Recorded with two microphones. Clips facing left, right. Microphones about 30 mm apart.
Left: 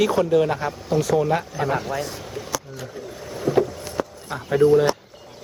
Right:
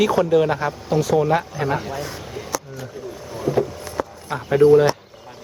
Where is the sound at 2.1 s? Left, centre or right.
Centre.